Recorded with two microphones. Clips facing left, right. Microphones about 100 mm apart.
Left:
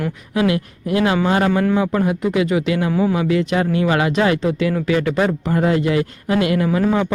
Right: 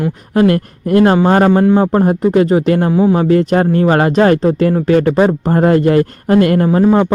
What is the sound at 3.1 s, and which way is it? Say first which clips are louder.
Speech: right 6 dB; 45° right (ahead or behind).